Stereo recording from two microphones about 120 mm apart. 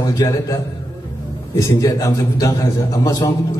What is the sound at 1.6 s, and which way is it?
A man's voice, 25° left (ahead or behind).